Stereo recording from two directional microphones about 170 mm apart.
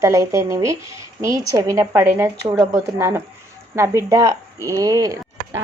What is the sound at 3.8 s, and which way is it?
Speech, 15° right (ahead or behind).